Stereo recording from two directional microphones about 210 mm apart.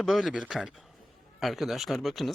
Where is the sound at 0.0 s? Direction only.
Centre (ahead or behind).